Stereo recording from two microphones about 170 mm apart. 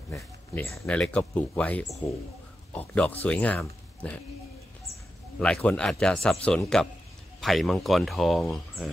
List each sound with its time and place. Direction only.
0.1 s speech: 15° left (ahead or behind)
0.8 s speech: 5° left (ahead or behind)
5.4 s speech: 10° left (ahead or behind)